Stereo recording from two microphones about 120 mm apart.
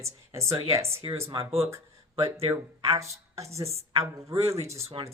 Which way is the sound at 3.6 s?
55° right (ahead or behind).